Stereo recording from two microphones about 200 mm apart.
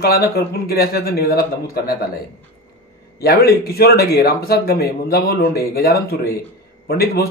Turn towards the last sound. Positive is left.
turn(degrees=50)  # may be behind; listen again after turning